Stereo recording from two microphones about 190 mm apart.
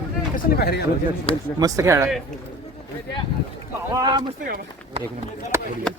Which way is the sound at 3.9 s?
20° right (ahead or behind).